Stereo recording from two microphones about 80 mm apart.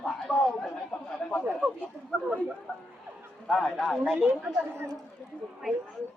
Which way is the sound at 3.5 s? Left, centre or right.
Centre.